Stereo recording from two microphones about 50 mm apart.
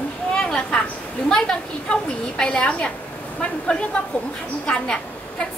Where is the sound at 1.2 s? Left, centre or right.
Centre.